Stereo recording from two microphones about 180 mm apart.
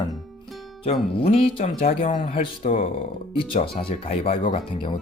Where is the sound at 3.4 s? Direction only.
30° left (ahead or behind).